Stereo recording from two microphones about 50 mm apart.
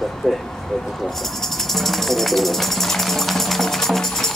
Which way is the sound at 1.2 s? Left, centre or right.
Centre.